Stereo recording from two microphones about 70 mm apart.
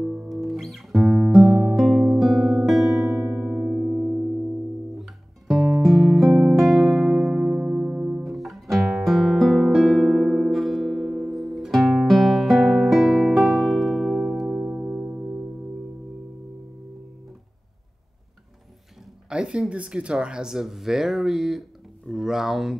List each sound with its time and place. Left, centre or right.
0.0 s guitar: centre
0.4 s guitar: centre
3.3 s music: right
5.5 s music: centre
8.2 s music: centre
14.6 s music: right
19.2 s a sound: centre
19.7 s speech: centre